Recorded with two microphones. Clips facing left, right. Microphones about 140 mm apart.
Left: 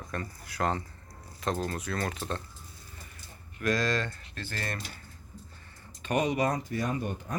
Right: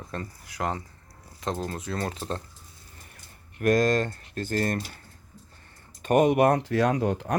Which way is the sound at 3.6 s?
50° right (ahead or behind).